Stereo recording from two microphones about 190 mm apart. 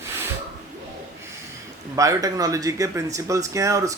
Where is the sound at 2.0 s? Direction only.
15° right (ahead or behind).